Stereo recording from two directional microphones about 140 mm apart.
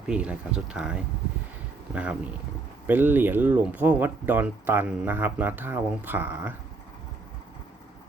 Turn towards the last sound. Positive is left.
turn(degrees=-15)  # may be behind; listen again after turning